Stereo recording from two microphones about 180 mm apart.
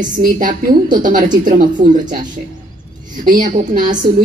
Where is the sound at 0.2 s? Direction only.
45° right (ahead or behind).